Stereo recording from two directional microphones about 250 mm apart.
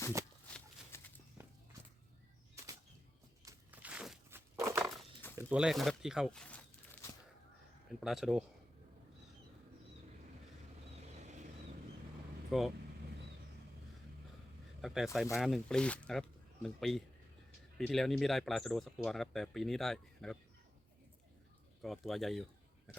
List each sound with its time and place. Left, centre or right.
0.2 s shuffling cards: centre
0.5 s horse: centre
3.4 s a sound: centre
4.9 s dog: centre
5.4 s speech: centre
7.9 s speech: centre
11.0 s vehicle: right
12.5 s speech: centre
14.8 s speech: centre
21.8 s speech: centre